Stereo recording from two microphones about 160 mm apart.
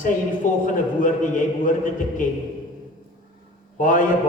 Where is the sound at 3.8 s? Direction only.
55° left (ahead or behind).